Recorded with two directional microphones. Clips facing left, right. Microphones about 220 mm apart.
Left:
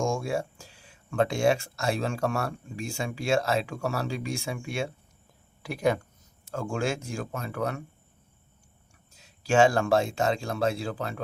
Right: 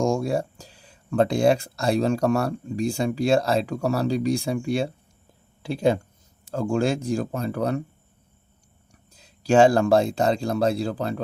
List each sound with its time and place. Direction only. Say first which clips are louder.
0.0 s speech: right 5 dB; 35° right (ahead or behind)
9.1 s speech: right 5 dB; 35° right (ahead or behind)